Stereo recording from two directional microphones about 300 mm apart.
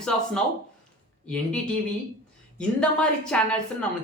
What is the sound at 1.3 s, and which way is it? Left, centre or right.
Speech, centre.